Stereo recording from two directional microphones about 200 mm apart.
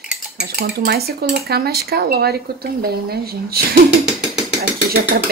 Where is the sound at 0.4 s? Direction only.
55° right (ahead or behind).